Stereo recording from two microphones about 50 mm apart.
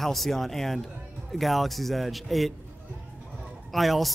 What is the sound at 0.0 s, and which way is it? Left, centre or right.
Speech, centre.